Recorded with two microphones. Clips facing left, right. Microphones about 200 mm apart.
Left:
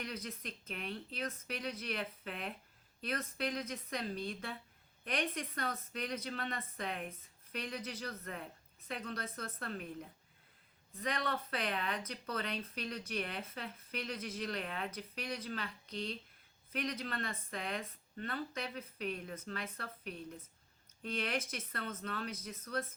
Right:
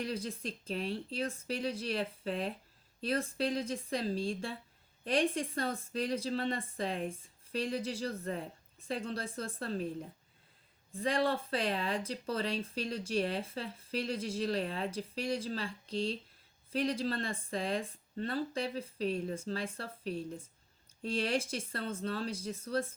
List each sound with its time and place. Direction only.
0.0 s speech: 30° right (ahead or behind)
10.9 s speech: 30° right (ahead or behind)